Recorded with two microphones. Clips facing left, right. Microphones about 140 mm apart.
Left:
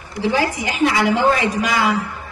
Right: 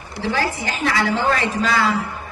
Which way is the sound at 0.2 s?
15° left (ahead or behind).